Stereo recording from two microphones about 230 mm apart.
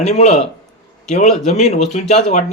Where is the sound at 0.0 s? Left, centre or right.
Left.